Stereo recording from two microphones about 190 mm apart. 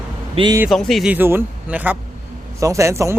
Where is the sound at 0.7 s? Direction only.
Centre (ahead or behind).